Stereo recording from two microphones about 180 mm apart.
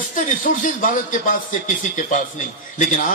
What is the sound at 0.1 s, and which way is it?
A man's voice, 45° left (ahead or behind).